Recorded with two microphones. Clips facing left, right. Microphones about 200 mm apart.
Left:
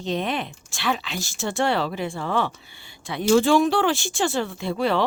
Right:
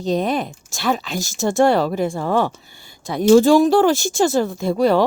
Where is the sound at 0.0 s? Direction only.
40° right (ahead or behind).